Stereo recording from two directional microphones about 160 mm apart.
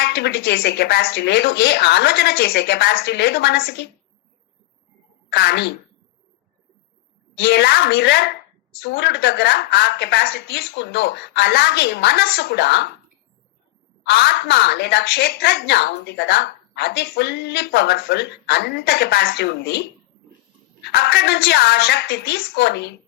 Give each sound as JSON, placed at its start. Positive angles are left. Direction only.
{"t": 0.0, "sound": "a woman's voice", "side_deg": 90}
{"t": 5.3, "sound": "speech", "side_deg": 80}
{"t": 7.4, "sound": "a woman's voice", "side_deg": 90}
{"t": 14.0, "sound": "a woman's voice", "side_deg": 90}
{"t": 20.8, "sound": "a woman's voice", "side_deg": 85}